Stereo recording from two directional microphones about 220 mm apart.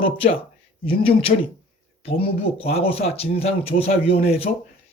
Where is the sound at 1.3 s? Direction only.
35° left (ahead or behind).